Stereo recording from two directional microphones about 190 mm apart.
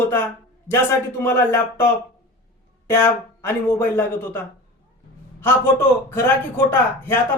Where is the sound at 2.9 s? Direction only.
15° left (ahead or behind).